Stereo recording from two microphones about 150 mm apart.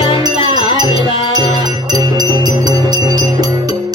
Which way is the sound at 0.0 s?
25° right (ahead or behind).